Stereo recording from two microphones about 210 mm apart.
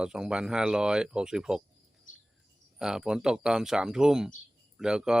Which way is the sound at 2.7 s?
5° right (ahead or behind).